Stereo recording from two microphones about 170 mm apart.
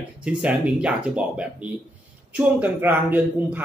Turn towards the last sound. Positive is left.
turn(degrees=-10)  # may be behind; listen again after turning